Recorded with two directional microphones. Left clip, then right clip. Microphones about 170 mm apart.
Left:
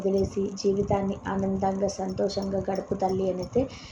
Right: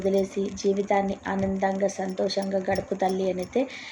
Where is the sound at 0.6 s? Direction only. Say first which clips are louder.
Right 2 dB; 15° right (ahead or behind).